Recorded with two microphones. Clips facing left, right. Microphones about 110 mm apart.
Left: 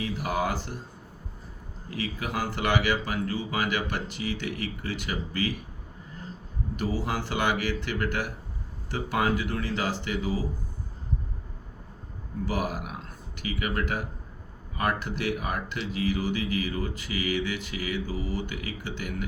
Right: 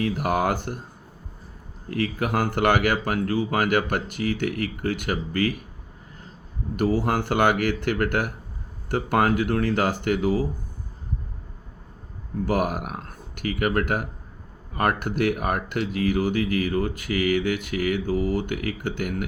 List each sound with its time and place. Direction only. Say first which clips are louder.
0.0 s speech: right 5 dB; 55° right (ahead or behind)
1.9 s speech: right 7 dB; 55° right (ahead or behind)
6.7 s speech: right 7 dB; 55° right (ahead or behind)
12.5 s speech: right 6 dB; 55° right (ahead or behind)